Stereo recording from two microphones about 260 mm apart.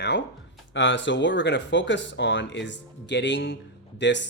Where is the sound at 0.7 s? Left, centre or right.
Left.